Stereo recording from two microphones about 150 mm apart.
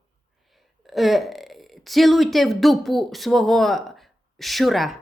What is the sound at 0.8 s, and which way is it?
Speech, centre (ahead or behind).